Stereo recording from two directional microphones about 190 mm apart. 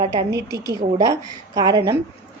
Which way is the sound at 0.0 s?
20° right (ahead or behind).